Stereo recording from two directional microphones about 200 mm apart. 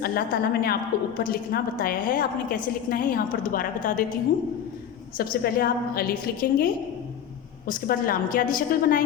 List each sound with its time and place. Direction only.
0.0 s a woman's voice: 50° left (ahead or behind)
5.1 s a woman's voice: 45° left (ahead or behind)
7.7 s a woman's voice: 45° left (ahead or behind)